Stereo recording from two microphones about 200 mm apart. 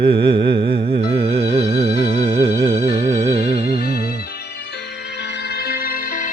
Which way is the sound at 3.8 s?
50° left (ahead or behind).